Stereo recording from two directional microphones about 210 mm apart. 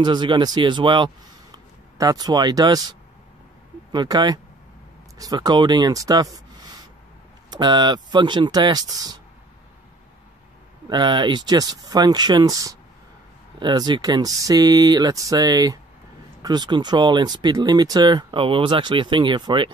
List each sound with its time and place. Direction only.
0.0 s speech: 20° right (ahead or behind)
7.5 s speech: 20° right (ahead or behind)
10.9 s speech: 20° right (ahead or behind)